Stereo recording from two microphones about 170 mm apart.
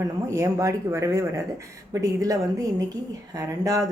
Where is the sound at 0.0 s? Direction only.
20° right (ahead or behind).